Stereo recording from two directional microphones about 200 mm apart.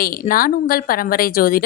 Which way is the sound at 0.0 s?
45° left (ahead or behind).